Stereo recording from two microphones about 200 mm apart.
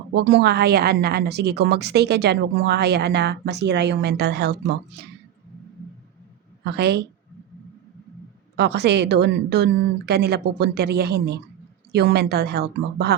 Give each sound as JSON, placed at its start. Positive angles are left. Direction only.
{"t": 0.1, "sound": "a woman's voice", "side_deg": -60}
{"t": 6.7, "sound": "a woman's voice", "side_deg": -55}
{"t": 8.5, "sound": "a woman's voice", "side_deg": -55}